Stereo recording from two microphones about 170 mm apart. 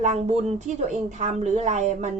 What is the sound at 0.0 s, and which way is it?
Speech, 40° right (ahead or behind).